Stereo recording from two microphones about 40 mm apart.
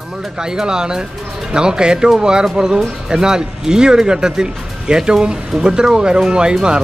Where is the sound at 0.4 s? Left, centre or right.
Centre.